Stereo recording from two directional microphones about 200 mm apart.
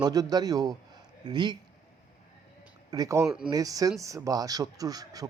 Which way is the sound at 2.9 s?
15° right (ahead or behind).